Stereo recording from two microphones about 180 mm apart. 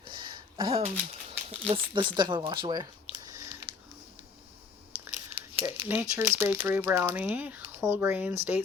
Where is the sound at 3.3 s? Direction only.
25° right (ahead or behind).